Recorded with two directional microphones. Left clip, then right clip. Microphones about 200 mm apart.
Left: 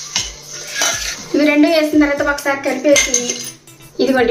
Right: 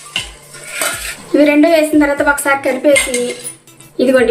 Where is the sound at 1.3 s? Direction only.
30° right (ahead or behind).